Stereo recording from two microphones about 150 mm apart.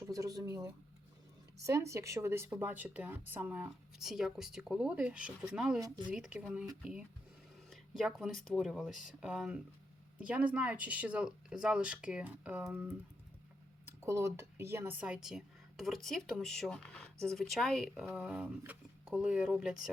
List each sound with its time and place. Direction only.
0.0 s speech: 25° right (ahead or behind); by 6.7 s 5° right (ahead or behind)
7.7 s speech: centre (ahead or behind)